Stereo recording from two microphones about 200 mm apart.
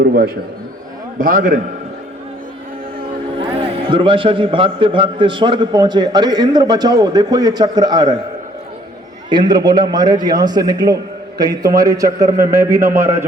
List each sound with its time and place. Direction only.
0.0 s a man's voice: 50° right (ahead or behind)
3.8 s a man's voice: 25° right (ahead or behind)
9.3 s a man's voice: 20° right (ahead or behind)